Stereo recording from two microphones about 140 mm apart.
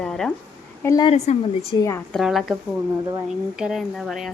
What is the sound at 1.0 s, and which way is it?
Speech, 50° left (ahead or behind).